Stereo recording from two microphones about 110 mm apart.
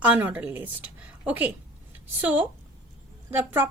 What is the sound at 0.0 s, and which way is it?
Speech, 15° right (ahead or behind).